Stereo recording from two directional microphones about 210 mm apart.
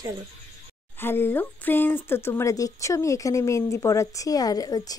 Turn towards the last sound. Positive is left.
turn(degrees=20)  # may be behind; listen again after turning